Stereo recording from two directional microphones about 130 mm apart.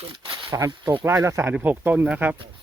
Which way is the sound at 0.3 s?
40° right (ahead or behind).